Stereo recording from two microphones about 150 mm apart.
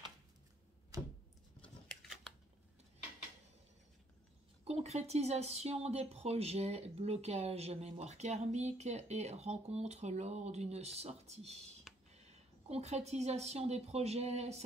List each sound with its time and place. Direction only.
0.9 s a sound: 25° right (ahead or behind)
1.6 s chewing: 5° left (ahead or behind)
4.6 s speech: 45° right (ahead or behind)
12.6 s speech: 45° right (ahead or behind)